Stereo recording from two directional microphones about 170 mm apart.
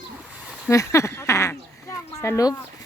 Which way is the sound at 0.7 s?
15° left (ahead or behind).